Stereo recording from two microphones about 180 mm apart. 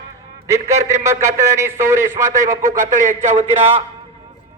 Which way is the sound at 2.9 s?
45° right (ahead or behind).